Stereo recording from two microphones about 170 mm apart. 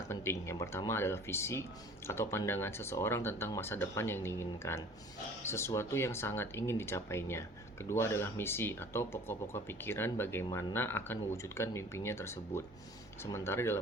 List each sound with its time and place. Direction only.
0.1 s speech: 15° left (ahead or behind)